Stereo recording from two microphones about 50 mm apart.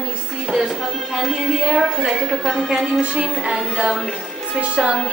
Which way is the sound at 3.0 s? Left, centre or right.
Right.